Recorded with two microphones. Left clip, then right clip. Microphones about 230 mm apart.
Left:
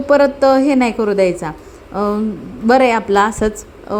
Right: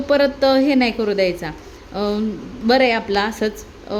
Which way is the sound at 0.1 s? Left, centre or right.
Centre.